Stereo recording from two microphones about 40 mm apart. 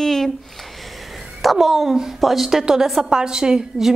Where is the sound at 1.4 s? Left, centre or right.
Centre.